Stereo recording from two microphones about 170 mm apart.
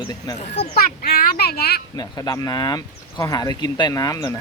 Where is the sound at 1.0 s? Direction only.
70° left (ahead or behind).